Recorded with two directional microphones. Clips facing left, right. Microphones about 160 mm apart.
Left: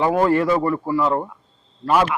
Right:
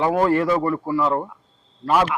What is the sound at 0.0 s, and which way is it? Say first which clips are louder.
Speech: left 1 dB; 15° left (ahead or behind).